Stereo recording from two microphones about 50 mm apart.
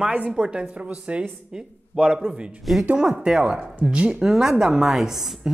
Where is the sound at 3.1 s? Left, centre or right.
Centre.